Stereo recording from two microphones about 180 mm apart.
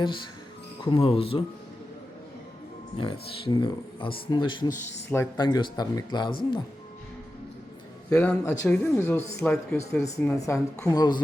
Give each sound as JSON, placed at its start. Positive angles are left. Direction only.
{"t": 0.9, "sound": "speech", "side_deg": 30}
{"t": 3.0, "sound": "speech", "side_deg": 30}
{"t": 5.0, "sound": "speech", "side_deg": 15}
{"t": 5.4, "sound": "speech", "side_deg": 25}
{"t": 8.1, "sound": "speech", "side_deg": 10}
{"t": 10.3, "sound": "speech", "side_deg": 15}